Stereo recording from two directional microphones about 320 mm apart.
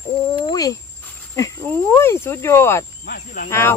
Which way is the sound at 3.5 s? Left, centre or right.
Centre.